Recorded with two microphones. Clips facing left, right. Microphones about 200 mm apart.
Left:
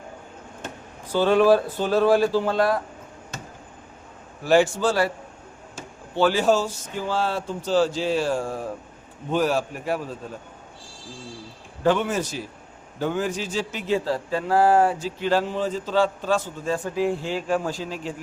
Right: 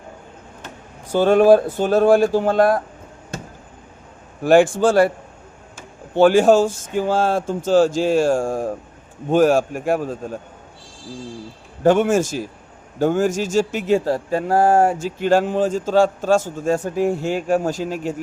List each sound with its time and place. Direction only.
1.1 s a man's voice: 45° right (ahead or behind)
4.4 s a man's voice: 50° right (ahead or behind)
6.1 s a man's voice: 50° right (ahead or behind)
11.8 s a man's voice: 45° right (ahead or behind)